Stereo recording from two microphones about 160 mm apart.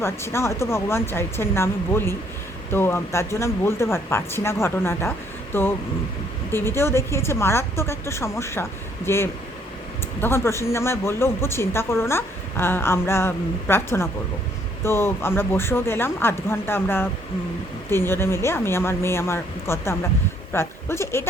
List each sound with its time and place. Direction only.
0.0 s speech: 15° left (ahead or behind)